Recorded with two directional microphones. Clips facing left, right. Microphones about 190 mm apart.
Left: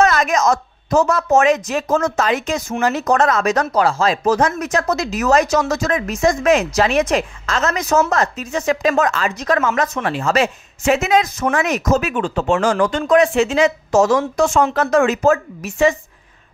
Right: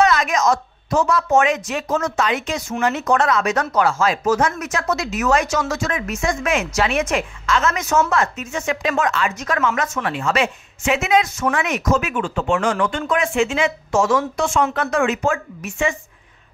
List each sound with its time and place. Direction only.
0.0 s a woman's voice: 45° left (ahead or behind)